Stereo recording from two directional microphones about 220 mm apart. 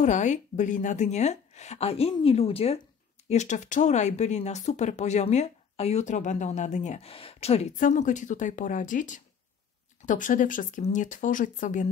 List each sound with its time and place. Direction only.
0.0 s a woman's voice: 35° left (ahead or behind)